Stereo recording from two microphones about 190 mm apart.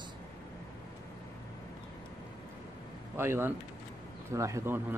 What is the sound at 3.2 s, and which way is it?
Speech, 15° right (ahead or behind).